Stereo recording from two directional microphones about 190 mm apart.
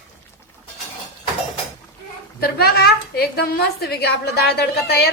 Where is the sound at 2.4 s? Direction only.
55° left (ahead or behind).